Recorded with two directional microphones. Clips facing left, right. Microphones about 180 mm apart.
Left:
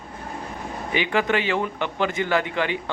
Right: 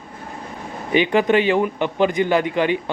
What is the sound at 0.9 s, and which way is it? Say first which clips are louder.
Speech: right 6 dB; 20° right (ahead or behind).